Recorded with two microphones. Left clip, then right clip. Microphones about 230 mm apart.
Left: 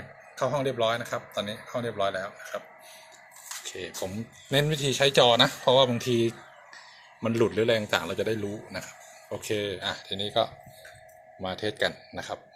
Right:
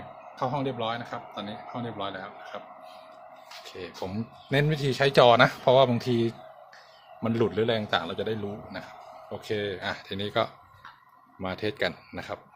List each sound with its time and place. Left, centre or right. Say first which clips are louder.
0.3 s a man's voice: left 3 dB; centre
3.6 s a man's voice: left 2 dB; centre